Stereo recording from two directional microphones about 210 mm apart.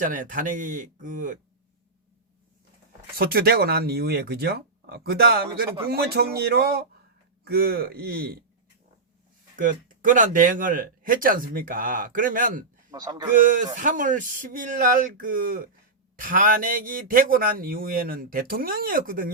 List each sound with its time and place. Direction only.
0.0 s speech: 40° right (ahead or behind)
3.2 s speech: 45° right (ahead or behind)
9.6 s speech: 40° right (ahead or behind)
12.9 s speech: 20° right (ahead or behind)
13.3 s speech: 40° right (ahead or behind)